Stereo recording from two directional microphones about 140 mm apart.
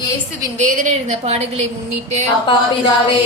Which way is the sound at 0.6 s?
65° right (ahead or behind).